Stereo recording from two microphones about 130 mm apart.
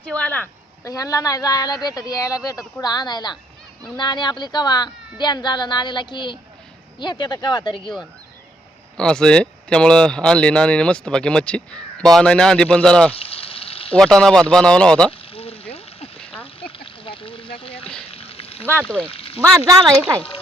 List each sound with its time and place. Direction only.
0.1 s speech: 10° left (ahead or behind)
0.9 s a woman's voice: 25° left (ahead or behind)
9.0 s speech: 5° left (ahead or behind)
13.1 s frying: 45° left (ahead or behind)
13.9 s speech: 5° left (ahead or behind)
15.3 s a sound: 45° left (ahead or behind)
19.4 s speech: 25° right (ahead or behind)